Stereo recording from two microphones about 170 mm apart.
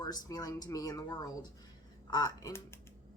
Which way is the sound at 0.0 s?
20° left (ahead or behind).